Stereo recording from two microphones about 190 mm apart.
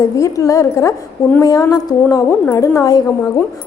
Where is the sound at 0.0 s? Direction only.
15° left (ahead or behind).